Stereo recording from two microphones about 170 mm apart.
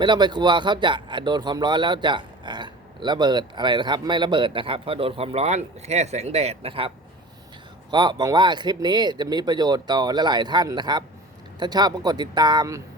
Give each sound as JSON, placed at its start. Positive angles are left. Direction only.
{"t": 0.0, "sound": "speech", "side_deg": -25}